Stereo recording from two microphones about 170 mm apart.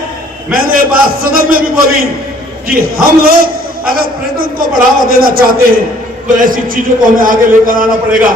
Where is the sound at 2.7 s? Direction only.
55° right (ahead or behind).